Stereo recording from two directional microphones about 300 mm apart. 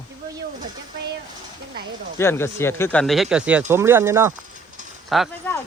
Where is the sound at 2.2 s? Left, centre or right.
Centre.